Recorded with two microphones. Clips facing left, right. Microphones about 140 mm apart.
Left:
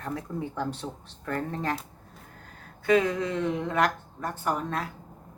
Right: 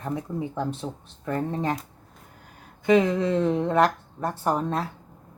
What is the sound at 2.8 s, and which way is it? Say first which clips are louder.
Speech: right 4 dB; 25° right (ahead or behind).